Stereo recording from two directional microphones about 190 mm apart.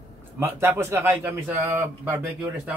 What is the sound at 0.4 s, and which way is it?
A man's voice, 10° right (ahead or behind).